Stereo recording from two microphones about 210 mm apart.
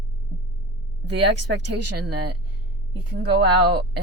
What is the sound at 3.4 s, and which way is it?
Speech, 50° right (ahead or behind).